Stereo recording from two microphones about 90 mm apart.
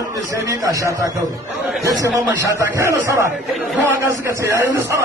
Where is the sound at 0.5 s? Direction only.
40° right (ahead or behind).